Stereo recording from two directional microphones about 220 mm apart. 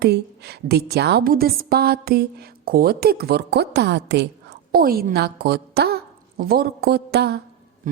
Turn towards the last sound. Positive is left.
turn(degrees=-45)  # may be behind; listen again after turning